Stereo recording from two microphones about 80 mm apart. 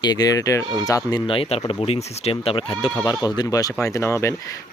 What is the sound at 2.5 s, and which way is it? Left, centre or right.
Speech, left.